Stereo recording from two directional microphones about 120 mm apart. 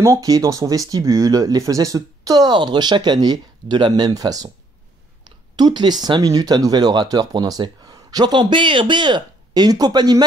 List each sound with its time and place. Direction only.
0.0 s speech: 25° right (ahead or behind)
5.6 s speech: 35° right (ahead or behind)